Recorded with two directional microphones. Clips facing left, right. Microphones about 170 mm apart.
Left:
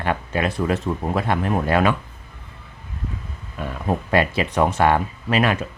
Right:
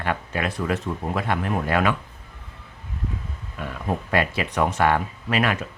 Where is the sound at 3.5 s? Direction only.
30° left (ahead or behind).